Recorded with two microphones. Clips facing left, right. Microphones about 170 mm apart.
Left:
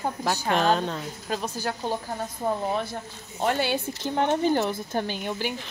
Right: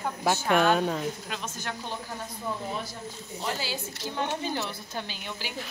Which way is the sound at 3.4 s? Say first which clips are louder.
Left 8 dB; 60° left (ahead or behind).